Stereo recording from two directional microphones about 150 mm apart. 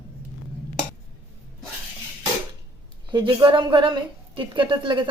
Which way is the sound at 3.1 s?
30° right (ahead or behind).